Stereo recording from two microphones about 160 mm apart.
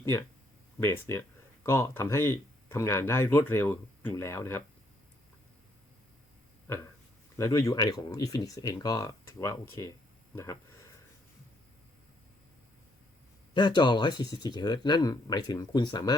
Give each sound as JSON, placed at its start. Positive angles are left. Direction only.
{"t": 0.0, "sound": "speech", "side_deg": 20}
{"t": 6.7, "sound": "a sound", "side_deg": 15}
{"t": 7.3, "sound": "speech", "side_deg": 20}
{"t": 13.5, "sound": "speech", "side_deg": 30}